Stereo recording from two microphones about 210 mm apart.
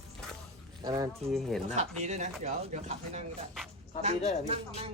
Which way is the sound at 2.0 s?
35° right (ahead or behind).